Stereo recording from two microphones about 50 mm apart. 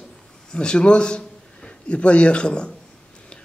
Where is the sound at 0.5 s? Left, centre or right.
Centre.